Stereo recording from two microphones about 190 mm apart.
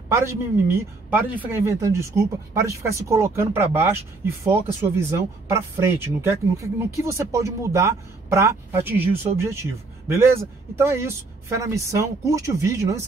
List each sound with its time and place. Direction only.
0.1 s speech: 15° right (ahead or behind)